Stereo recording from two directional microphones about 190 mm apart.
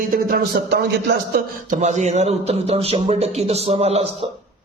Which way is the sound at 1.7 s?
40° right (ahead or behind).